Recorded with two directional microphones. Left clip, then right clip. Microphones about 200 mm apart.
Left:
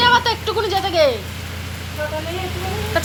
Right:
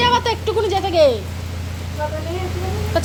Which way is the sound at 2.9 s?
35° right (ahead or behind).